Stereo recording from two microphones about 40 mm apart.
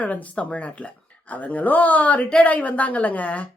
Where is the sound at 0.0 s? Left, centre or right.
Left.